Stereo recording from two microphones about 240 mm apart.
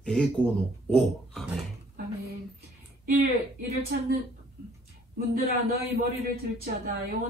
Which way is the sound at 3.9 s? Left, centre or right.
Right.